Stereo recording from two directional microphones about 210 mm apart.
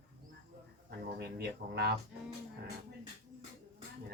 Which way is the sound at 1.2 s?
50° right (ahead or behind).